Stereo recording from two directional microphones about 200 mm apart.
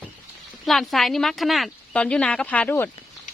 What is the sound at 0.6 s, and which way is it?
Speech, centre (ahead or behind).